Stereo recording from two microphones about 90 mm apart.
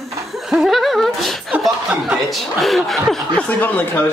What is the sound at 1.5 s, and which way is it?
Speech, 15° right (ahead or behind).